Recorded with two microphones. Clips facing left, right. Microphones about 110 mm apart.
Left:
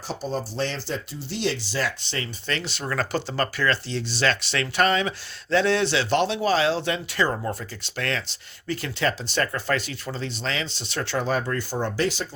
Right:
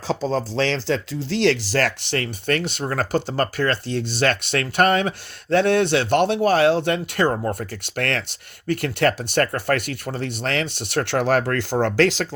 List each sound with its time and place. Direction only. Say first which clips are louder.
0.1 s speech: right 7 dB; 90° right
2.1 s speech: right 7 dB; 55° right (ahead or behind)
7.3 s speech: right 5 dB; 40° right (ahead or behind)
7.9 s speech: right 4 dB; 60° right (ahead or behind); by 12.3 s 90° right